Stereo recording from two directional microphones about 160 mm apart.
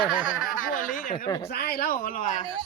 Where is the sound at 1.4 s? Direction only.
80° left; by 2.4 s 55° left (ahead or behind).